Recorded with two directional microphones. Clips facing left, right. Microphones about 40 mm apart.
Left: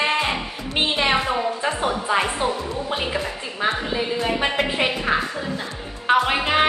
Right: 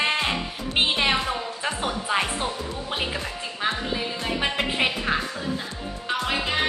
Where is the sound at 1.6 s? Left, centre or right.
Centre.